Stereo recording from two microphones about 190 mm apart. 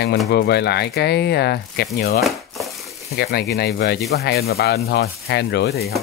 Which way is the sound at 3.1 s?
60° left (ahead or behind).